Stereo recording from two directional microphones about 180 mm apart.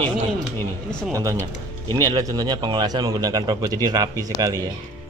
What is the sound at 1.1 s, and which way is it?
A man's voice, 20° right (ahead or behind).